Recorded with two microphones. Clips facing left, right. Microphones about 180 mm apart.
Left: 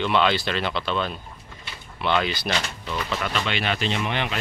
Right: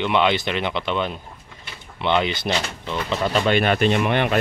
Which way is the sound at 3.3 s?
45° right (ahead or behind).